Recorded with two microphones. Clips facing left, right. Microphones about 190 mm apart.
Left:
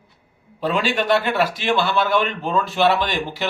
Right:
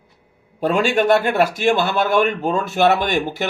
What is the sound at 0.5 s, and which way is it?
A man's voice, 50° right (ahead or behind).